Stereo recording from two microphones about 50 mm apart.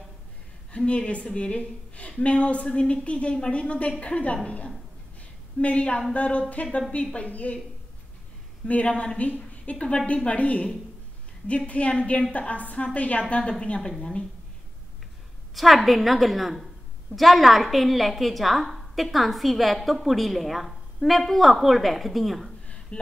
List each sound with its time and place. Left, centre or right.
0.7 s a woman's voice: left
8.6 s a woman's voice: left
15.5 s a woman's voice: centre